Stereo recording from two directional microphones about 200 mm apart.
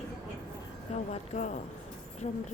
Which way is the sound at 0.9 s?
35° left (ahead or behind).